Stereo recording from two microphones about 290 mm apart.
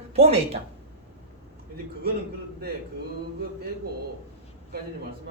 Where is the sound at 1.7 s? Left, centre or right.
Right.